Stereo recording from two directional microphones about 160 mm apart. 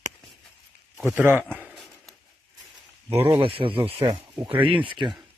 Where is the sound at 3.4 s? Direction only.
35° right (ahead or behind).